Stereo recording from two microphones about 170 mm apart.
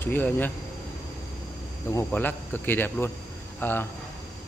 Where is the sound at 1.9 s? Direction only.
10° left (ahead or behind).